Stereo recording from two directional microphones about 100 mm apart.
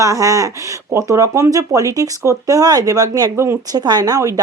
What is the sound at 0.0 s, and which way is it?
Speech, 35° right (ahead or behind).